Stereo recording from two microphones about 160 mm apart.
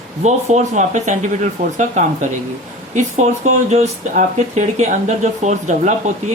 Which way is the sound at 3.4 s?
45° right (ahead or behind).